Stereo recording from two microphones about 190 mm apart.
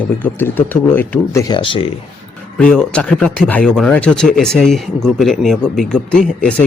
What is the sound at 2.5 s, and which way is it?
Speech, 5° left (ahead or behind).